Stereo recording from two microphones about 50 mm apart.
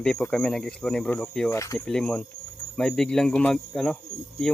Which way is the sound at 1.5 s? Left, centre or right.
Left.